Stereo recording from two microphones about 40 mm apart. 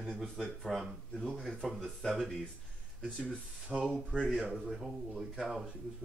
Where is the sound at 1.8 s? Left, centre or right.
Centre.